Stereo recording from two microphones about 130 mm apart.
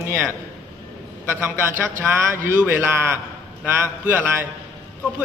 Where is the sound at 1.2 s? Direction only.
20° right (ahead or behind).